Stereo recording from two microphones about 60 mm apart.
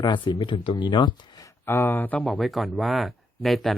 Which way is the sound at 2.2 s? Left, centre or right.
Centre.